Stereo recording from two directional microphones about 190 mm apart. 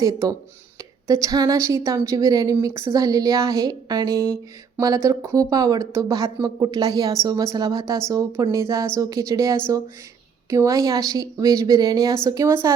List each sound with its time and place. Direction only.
0.0 s speech: 20° right (ahead or behind)